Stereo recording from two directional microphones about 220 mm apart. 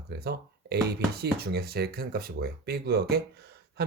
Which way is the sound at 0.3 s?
45° right (ahead or behind).